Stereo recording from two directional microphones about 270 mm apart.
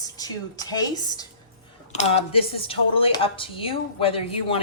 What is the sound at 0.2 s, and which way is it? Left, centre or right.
Speech, centre.